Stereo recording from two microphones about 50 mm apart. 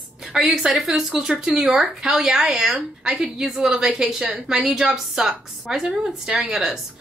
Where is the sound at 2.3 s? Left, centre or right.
Centre.